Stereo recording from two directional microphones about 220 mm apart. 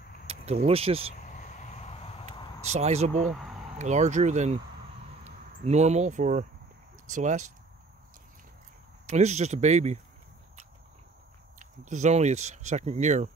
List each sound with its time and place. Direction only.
0.3 s speech: 25° right (ahead or behind)
1.5 s vehicle: 35° left (ahead or behind)
2.2 s a sound: 30° right (ahead or behind)
3.7 s speech: 30° right (ahead or behind)
9.0 s speech: 30° right (ahead or behind)
11.8 s speech: 35° right (ahead or behind)